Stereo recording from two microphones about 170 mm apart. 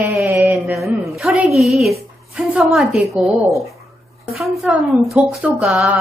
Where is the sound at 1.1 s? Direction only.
5° right (ahead or behind).